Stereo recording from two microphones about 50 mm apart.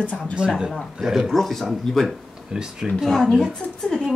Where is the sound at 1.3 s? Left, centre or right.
Centre.